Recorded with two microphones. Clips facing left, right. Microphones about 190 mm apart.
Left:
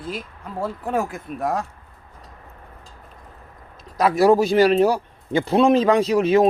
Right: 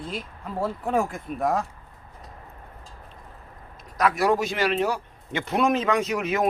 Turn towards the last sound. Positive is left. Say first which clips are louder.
# left 8 dB
turn(degrees=30)  # may be behind; listen again after turning